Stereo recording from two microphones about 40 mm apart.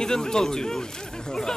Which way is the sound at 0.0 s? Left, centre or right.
Centre.